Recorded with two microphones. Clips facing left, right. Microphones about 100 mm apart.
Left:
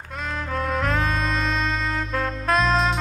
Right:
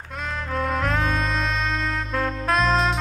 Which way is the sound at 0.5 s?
Centre (ahead or behind).